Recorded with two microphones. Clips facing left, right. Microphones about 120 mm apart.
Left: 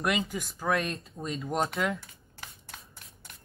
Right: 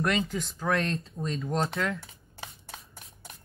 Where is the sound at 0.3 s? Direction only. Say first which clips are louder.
Right 1 dB; 5° left (ahead or behind).